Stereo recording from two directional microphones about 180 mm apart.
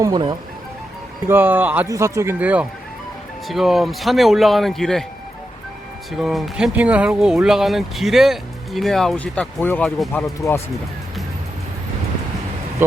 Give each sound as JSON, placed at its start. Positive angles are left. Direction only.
{"t": 0.0, "sound": "speech", "side_deg": -25}
{"t": 1.3, "sound": "speech", "side_deg": -10}
{"t": 6.1, "sound": "speech", "side_deg": 0}